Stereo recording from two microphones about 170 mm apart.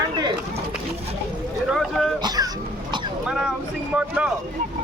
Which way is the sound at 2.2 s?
20° right (ahead or behind).